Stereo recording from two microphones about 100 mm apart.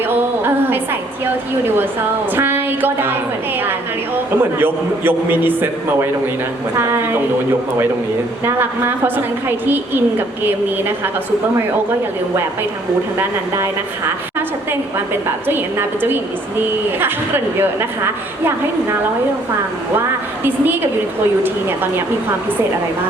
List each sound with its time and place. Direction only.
0.0 s a sound: 20° right (ahead or behind)
1.6 s a woman's voice: 20° right (ahead or behind)
8.4 s a woman's voice: 25° right (ahead or behind)
15.4 s a woman's voice: 20° right (ahead or behind)
21.4 s a woman's voice: 20° right (ahead or behind)